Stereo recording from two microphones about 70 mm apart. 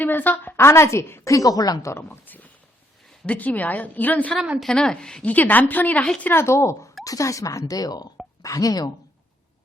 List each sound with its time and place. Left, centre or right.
0.0 s a woman's voice: left
1.2 s a woman's voice: left
1.9 s a woman's voice: left
4.6 s a woman's voice: centre
5.3 s a woman's voice: left
6.2 s a woman's voice: left
7.6 s speech: left
8.4 s a woman's voice: left